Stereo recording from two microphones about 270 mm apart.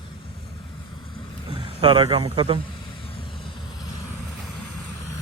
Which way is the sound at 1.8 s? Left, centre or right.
Centre.